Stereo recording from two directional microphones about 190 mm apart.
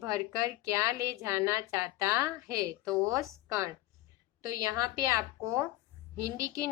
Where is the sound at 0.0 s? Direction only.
15° right (ahead or behind).